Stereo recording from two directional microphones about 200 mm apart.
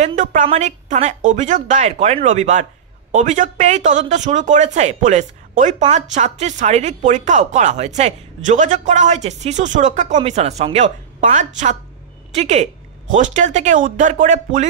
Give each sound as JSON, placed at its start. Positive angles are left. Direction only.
{"t": 0.0, "sound": "speech", "side_deg": -40}